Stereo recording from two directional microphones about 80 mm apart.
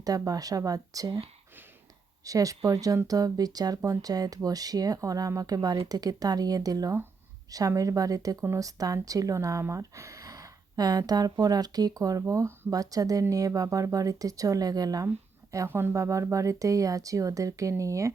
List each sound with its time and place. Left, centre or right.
0.0 s speech: right
2.2 s speech: right
15.5 s speech: right